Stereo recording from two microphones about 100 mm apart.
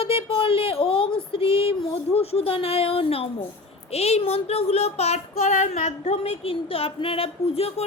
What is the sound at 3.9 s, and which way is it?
Speech, 90° left.